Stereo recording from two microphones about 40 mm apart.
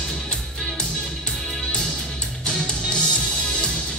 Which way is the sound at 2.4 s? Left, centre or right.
Left.